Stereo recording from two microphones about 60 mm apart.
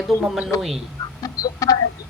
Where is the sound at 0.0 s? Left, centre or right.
Centre.